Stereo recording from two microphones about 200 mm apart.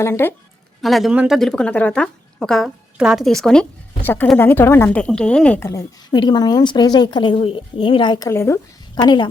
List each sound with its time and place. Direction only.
0.0 s a woman's voice: 10° left (ahead or behind)
0.8 s a woman's voice: centre (ahead or behind); by 9.1 s 20° left (ahead or behind)